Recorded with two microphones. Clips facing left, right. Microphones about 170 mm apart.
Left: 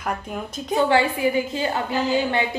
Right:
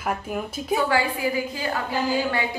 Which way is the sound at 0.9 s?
25° left (ahead or behind).